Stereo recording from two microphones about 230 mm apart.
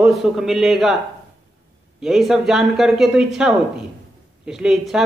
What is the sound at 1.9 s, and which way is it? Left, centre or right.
Speech, centre.